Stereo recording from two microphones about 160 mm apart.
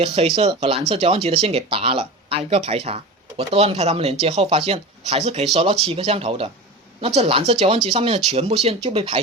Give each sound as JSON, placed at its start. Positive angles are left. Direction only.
{"t": 0.0, "sound": "speech", "side_deg": -40}